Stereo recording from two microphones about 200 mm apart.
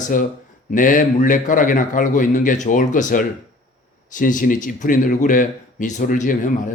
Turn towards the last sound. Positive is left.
turn(degrees=40)  # may be behind; listen again after turning